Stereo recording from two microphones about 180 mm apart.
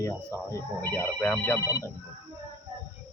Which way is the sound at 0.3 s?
10° left (ahead or behind).